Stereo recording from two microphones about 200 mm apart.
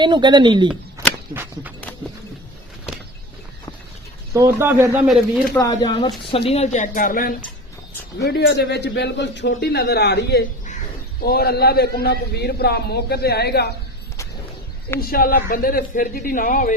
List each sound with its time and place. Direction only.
0.0 s speech: 20° right (ahead or behind)
1.3 s speech: 10° right (ahead or behind)
4.4 s speech: 15° right (ahead or behind)
5.0 s speech: centre (ahead or behind)
5.5 s speech: 20° left (ahead or behind); by 7.3 s 45° left (ahead or behind)
8.2 s a man's voice: 55° left (ahead or behind)
14.9 s a man's voice: 50° left (ahead or behind)